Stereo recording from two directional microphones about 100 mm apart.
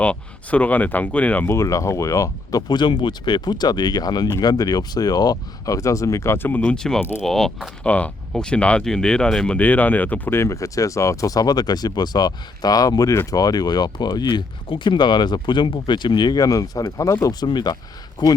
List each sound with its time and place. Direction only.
0.0 s speech: 15° left (ahead or behind)
1.5 s speech: 30° left (ahead or behind); by 7.7 s 5° left (ahead or behind)
7.9 s speech: 15° left (ahead or behind); by 18.3 s 45° left (ahead or behind)